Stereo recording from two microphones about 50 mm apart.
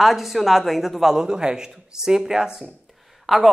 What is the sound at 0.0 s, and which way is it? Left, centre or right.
Speech, centre.